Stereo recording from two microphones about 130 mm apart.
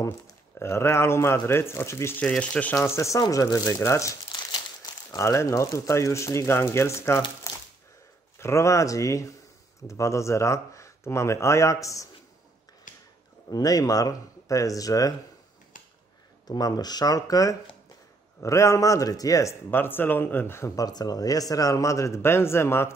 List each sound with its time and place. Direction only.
0.6 s speech: 20° left (ahead or behind)
4.3 s speech: 35° left (ahead or behind)
12.9 s a sound: 90° left
13.5 s speech: 30° left (ahead or behind)
16.4 s speech: 30° left (ahead or behind)